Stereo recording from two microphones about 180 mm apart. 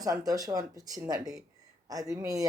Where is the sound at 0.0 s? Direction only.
20° right (ahead or behind).